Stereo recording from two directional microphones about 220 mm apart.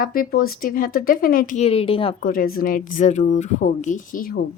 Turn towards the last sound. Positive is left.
turn(degrees=40)  # may be behind; listen again after turning